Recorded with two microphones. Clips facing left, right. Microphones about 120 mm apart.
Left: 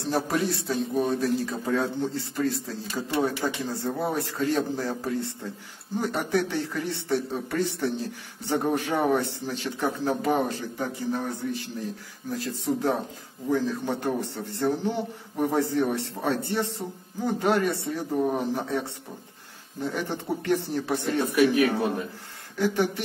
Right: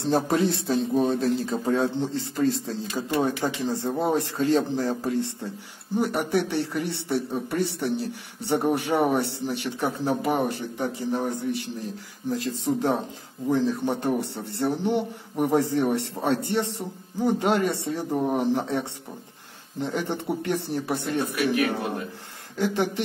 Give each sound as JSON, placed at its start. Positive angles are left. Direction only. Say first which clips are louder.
{"t": 0.0, "sound": "a man's voice", "louder": "right 4 dB", "side_deg": -25}
{"t": 8.5, "sound": "a man's voice", "louder": "right 2 dB", "side_deg": -15}